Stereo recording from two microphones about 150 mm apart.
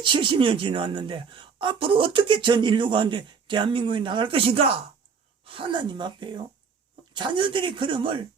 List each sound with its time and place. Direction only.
0.0 s speech: 35° right (ahead or behind)